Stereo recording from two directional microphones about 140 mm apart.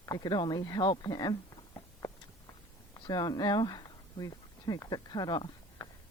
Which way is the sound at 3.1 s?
30° left (ahead or behind).